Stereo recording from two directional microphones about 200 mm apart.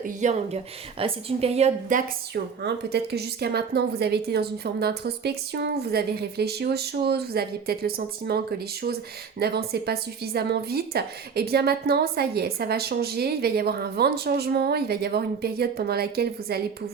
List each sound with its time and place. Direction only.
0.0 s a woman's voice: 35° right (ahead or behind)